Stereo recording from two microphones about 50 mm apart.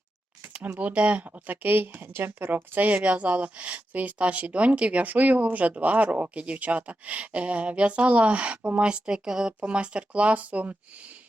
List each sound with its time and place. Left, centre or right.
0.5 s a woman's voice: right
2.7 s a woman's voice: right